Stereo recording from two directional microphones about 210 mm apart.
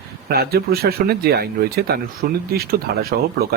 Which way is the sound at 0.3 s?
50° right (ahead or behind).